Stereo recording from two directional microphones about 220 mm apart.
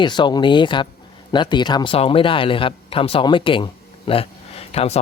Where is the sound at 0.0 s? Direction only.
20° left (ahead or behind).